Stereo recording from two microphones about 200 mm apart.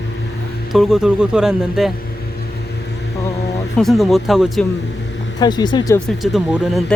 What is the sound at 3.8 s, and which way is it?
Speech, centre (ahead or behind).